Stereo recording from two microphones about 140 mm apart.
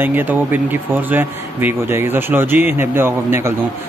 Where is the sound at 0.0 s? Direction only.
15° right (ahead or behind).